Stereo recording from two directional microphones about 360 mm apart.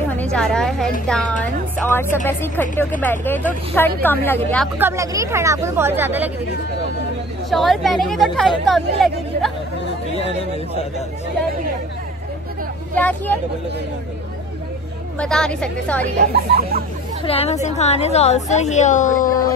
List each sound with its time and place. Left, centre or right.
0.1 s a woman's voice: centre
4.7 s speech: centre
7.4 s speech: centre
12.9 s speech: centre
15.1 s speech: centre
16.2 s speech: right
17.2 s a woman's voice: centre